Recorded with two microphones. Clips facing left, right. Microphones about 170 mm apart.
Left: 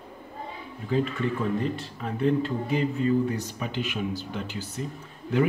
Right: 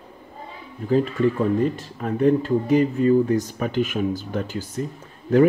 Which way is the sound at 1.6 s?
45° right (ahead or behind).